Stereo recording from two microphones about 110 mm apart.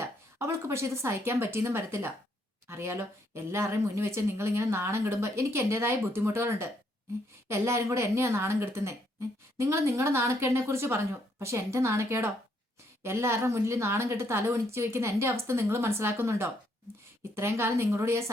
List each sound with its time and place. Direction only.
0.3 s speech: 25° right (ahead or behind)